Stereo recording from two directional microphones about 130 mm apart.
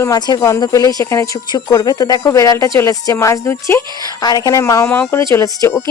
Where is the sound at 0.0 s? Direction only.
25° left (ahead or behind).